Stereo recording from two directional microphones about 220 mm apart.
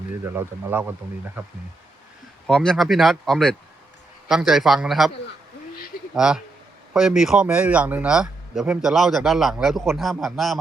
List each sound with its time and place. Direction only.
0.3 s speech: 10° right (ahead or behind)
2.5 s speech: 5° left (ahead or behind)
6.1 s speech: 5° right (ahead or behind)